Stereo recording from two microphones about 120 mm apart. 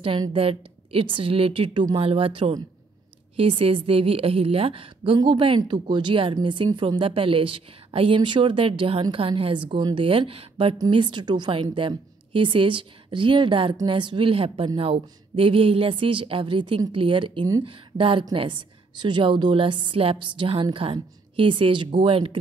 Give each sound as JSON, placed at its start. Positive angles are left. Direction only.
{"t": 0.3, "sound": "a woman's voice", "side_deg": -50}